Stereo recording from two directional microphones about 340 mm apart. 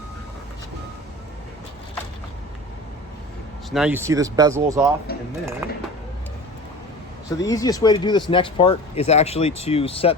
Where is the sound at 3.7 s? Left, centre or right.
Centre.